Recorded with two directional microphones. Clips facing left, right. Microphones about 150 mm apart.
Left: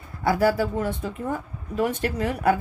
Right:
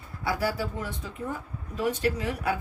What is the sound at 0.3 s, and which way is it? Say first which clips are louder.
Speech: left 8 dB; 50° left (ahead or behind).